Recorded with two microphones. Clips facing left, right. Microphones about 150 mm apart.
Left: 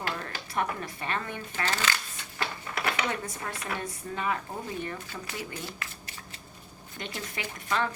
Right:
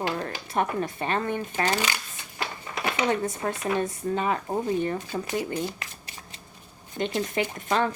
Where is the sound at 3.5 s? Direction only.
20° right (ahead or behind).